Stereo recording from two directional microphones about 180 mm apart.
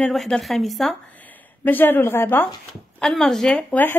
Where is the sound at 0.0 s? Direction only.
Centre (ahead or behind).